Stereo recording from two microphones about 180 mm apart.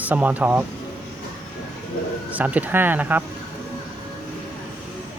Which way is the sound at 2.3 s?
10° right (ahead or behind).